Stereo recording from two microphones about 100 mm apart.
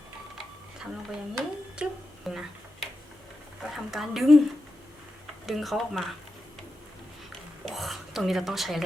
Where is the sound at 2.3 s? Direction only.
Centre (ahead or behind).